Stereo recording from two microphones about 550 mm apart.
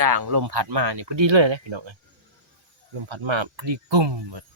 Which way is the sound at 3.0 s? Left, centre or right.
Right.